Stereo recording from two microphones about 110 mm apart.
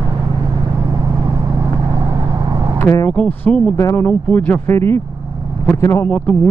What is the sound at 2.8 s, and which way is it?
Speech, 30° left (ahead or behind).